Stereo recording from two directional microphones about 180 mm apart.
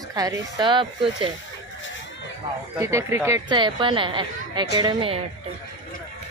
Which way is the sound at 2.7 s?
15° right (ahead or behind).